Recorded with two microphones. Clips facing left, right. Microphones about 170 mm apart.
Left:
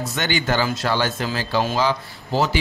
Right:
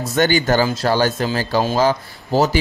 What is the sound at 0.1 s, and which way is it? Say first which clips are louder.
Speech: right 8 dB; 40° right (ahead or behind).